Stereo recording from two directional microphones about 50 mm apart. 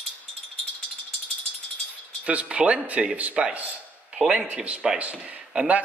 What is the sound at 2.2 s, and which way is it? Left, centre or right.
Speech, right.